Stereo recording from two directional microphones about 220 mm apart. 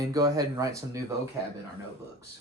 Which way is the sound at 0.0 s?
15° right (ahead or behind).